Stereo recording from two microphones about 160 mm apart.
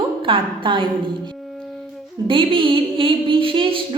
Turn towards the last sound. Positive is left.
turn(degrees=-30)  # may be behind; listen again after turning